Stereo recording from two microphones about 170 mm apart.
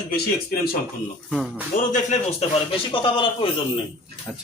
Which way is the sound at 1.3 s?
5° right (ahead or behind).